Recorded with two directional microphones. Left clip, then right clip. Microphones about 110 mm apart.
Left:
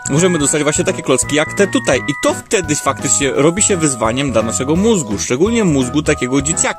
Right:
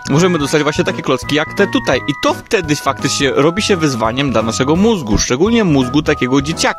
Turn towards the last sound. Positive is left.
turn(degrees=-30)  # may be behind; listen again after turning